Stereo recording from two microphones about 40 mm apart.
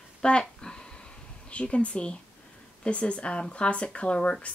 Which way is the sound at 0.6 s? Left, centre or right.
Left.